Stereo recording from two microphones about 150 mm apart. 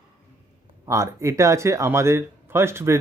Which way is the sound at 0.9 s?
20° right (ahead or behind).